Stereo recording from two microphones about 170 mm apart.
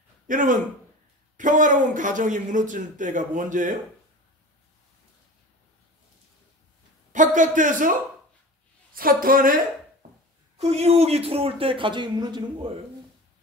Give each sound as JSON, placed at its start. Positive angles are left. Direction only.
{"t": 0.3, "sound": "a man's voice", "side_deg": -50}
{"t": 7.1, "sound": "a man's voice", "side_deg": -50}
{"t": 8.9, "sound": "a woman's voice", "side_deg": -55}
{"t": 10.6, "sound": "a man's voice", "side_deg": -40}